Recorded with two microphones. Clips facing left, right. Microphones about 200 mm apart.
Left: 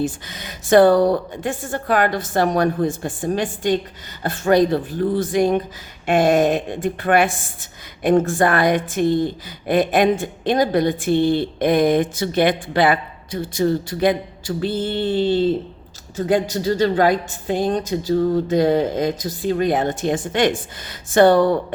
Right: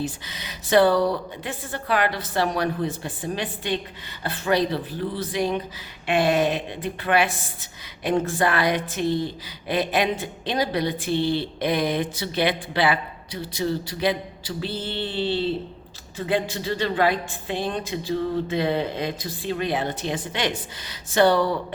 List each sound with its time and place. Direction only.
0.0 s speech: 50° left (ahead or behind)